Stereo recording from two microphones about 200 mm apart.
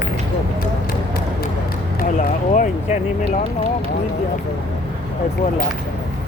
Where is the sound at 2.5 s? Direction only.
40° left (ahead or behind).